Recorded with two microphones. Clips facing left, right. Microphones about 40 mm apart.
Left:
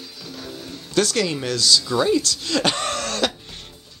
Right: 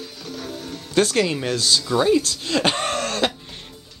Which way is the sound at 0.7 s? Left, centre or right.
Right.